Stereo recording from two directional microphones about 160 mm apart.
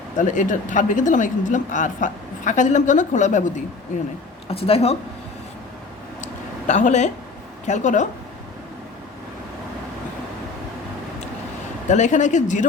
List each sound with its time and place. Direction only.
0.2 s speech: 50° left (ahead or behind)
4.4 s speech: 35° left (ahead or behind)
6.2 s a sound: 50° left (ahead or behind)
7.7 s speech: 50° left (ahead or behind)
11.9 s speech: 50° left (ahead or behind)